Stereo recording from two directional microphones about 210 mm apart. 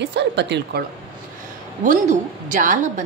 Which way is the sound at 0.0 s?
55° right (ahead or behind).